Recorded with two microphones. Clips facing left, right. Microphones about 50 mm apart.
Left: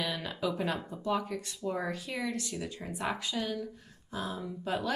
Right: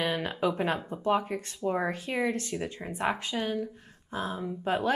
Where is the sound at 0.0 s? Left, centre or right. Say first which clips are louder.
Right 5 dB; right.